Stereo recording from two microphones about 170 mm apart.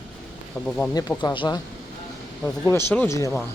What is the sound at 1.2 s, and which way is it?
Speech, 25° left (ahead or behind).